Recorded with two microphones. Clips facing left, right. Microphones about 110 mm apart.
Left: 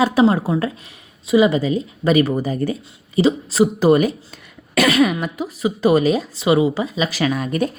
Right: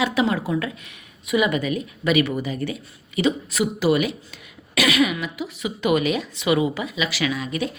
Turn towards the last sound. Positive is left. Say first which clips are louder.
# left 5 dB
turn(degrees=45)  # may be behind; listen again after turning